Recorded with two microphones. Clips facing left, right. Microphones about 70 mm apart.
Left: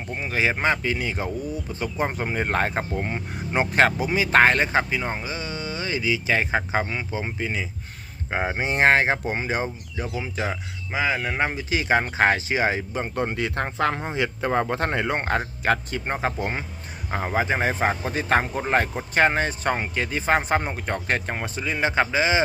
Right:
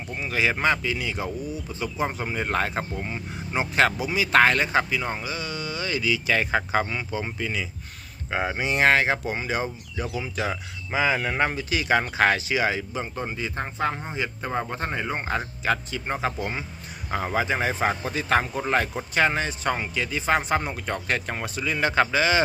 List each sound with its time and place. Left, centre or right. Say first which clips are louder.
0.1 s speech: left 1 dB; left
0.8 s speech: left 2 dB; left
10.9 s speech: right 1 dB; centre
11.7 s speech: left 1 dB; left
13.1 s speech: left 7 dB; left
15.4 s speech: left 3 dB; left
17.1 s speech: left 1 dB; left